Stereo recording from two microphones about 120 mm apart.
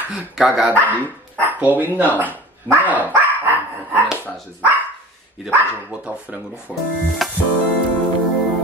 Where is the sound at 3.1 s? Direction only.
15° right (ahead or behind).